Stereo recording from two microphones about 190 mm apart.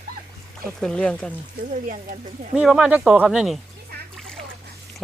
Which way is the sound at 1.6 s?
45° right (ahead or behind).